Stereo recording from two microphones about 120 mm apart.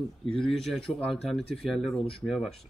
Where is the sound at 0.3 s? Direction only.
5° left (ahead or behind).